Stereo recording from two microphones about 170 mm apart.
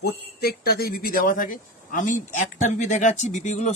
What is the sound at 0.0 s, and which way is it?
Speech, 65° left (ahead or behind).